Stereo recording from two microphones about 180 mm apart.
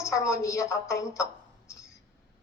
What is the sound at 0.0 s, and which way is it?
A woman's voice, 15° left (ahead or behind).